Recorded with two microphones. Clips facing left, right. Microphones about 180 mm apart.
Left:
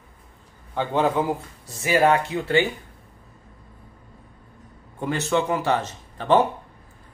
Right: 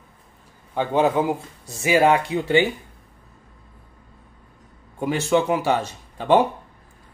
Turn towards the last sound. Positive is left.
turn(degrees=-10)  # may be behind; listen again after turning